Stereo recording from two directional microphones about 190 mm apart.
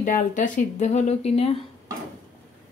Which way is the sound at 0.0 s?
45° left (ahead or behind).